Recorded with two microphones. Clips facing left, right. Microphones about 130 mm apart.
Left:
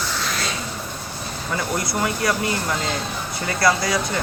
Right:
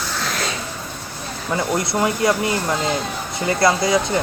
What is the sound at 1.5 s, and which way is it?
Speech, 25° right (ahead or behind).